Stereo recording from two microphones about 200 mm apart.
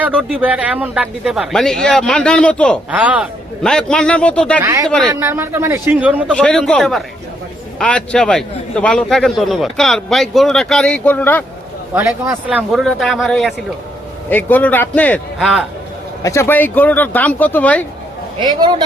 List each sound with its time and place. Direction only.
0.0 s a man's voice: 5° right (ahead or behind)
2.9 s a man's voice: 5° right (ahead or behind)
3.6 s a man's voice: 5° left (ahead or behind)
4.6 s a man's voice: 15° right (ahead or behind)
4.9 s a man's voice: 5° left (ahead or behind)
5.2 s a man's voice: 10° right (ahead or behind)
6.3 s a man's voice: 5° left (ahead or behind)
11.9 s a man's voice: 15° right (ahead or behind)
16.2 s speech: 15° left (ahead or behind)
18.4 s speech: 25° right (ahead or behind)